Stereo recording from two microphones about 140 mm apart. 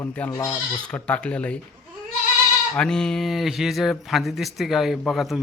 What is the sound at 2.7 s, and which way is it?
Speech, 5° left (ahead or behind).